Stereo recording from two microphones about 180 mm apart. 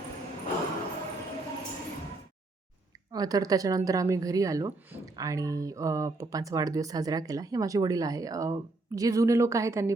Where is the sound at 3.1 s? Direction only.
20° right (ahead or behind).